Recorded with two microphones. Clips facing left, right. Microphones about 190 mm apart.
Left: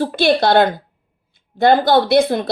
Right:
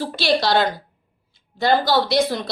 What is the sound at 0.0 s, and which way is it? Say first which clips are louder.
A woman's voice: left 5 dB; 55° left (ahead or behind).